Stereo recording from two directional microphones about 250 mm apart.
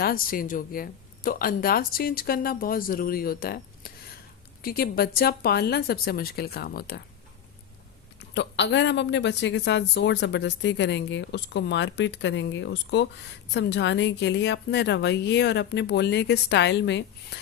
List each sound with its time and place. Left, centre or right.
0.0 s speech: left
8.3 s a woman's voice: left